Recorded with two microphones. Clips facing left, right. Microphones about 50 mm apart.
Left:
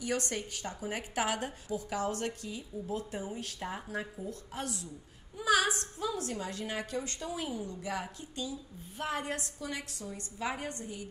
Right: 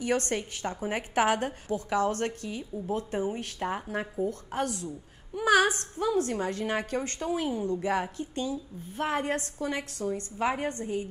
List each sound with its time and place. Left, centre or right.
0.0 s a woman's voice: right